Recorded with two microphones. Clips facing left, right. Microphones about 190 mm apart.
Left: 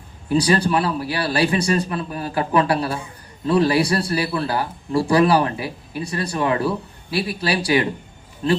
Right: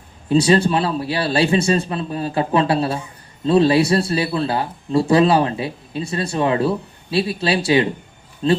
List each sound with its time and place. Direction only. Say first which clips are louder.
0.3 s a man's voice: right 3 dB; 25° right (ahead or behind)